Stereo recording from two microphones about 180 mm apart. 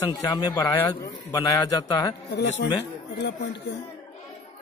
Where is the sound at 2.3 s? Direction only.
90° left.